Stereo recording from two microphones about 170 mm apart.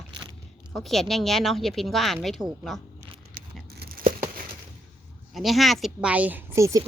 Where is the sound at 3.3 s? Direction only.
60° right (ahead or behind).